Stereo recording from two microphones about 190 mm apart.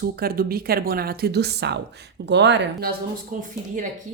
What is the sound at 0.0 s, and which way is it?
Speech, 50° right (ahead or behind).